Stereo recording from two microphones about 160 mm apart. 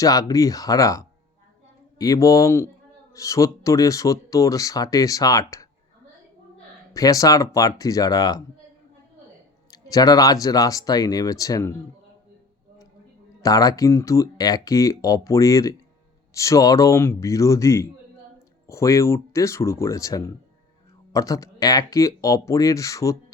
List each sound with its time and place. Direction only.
0.0 s speech: 20° left (ahead or behind)
6.9 s speech: 20° left (ahead or behind)
9.6 s a sound: 25° left (ahead or behind)
10.4 s speech: 20° left (ahead or behind)
13.4 s speech: 20° left (ahead or behind)